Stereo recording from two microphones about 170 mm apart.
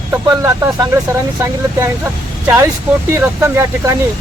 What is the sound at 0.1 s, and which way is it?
Speech, 15° right (ahead or behind).